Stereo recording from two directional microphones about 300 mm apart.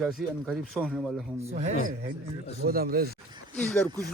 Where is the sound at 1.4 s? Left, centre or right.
Right.